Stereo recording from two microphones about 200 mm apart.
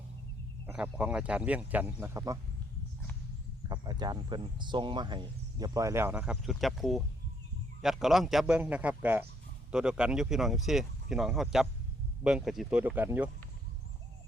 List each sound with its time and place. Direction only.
0.7 s speech: 5° right (ahead or behind)
3.7 s speech: 20° right (ahead or behind)